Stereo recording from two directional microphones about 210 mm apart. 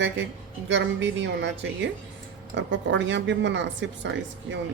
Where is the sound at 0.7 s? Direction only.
60° right (ahead or behind).